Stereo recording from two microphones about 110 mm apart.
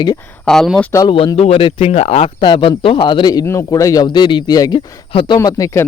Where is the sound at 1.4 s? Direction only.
65° left (ahead or behind).